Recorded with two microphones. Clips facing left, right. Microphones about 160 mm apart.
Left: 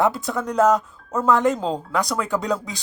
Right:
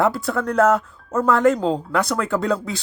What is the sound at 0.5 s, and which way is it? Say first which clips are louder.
Speech: even; centre (ahead or behind).